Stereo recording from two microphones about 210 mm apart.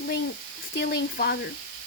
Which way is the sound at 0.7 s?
55° left (ahead or behind).